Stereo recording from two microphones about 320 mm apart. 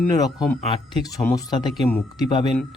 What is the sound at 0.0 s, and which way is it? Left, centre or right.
Speech, centre.